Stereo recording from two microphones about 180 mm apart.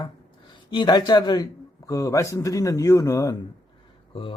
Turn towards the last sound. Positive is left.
turn(degrees=15)  # may be behind; listen again after turning